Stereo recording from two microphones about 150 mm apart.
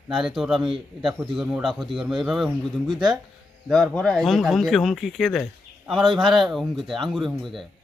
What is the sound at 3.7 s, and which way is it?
A man's voice, 5° left (ahead or behind).